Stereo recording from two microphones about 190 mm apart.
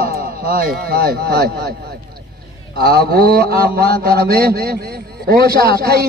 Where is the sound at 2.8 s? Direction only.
55° right (ahead or behind).